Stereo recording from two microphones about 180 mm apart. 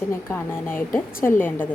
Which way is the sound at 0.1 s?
15° left (ahead or behind).